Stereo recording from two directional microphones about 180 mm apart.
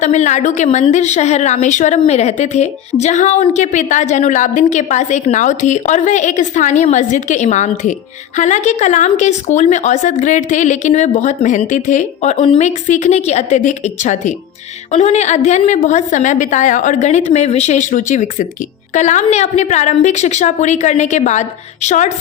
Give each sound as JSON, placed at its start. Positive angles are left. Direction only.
{"t": 0.0, "sound": "a woman's voice", "side_deg": 40}